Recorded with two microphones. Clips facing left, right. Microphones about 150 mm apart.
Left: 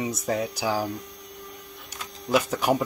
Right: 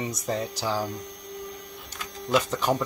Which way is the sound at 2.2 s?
10° left (ahead or behind).